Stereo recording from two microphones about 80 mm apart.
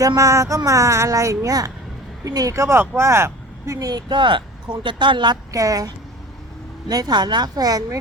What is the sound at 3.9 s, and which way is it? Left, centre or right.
Speech, right.